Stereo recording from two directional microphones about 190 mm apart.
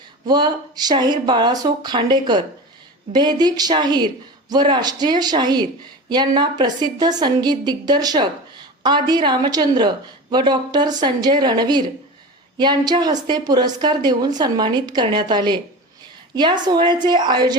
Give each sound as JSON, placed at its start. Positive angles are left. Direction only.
{"t": 0.3, "sound": "a woman's voice", "side_deg": -20}